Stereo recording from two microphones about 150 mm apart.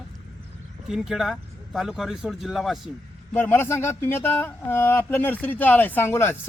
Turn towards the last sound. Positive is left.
turn(degrees=15)  # may be behind; listen again after turning